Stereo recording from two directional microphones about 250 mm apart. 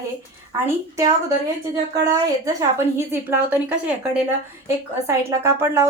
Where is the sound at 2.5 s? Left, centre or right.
Centre.